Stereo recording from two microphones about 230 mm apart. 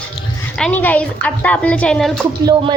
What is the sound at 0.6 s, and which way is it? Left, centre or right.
A woman's voice, centre.